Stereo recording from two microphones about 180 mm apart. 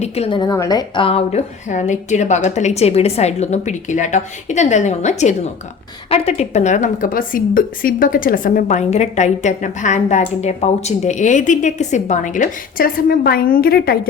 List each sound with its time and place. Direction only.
0.0 s a woman's voice: 30° left (ahead or behind); by 14.1 s 55° left (ahead or behind)